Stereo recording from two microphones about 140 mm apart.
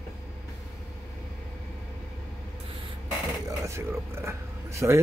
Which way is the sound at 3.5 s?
20° right (ahead or behind).